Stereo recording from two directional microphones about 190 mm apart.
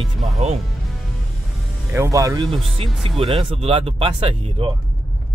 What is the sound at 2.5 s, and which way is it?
Speech, 30° right (ahead or behind).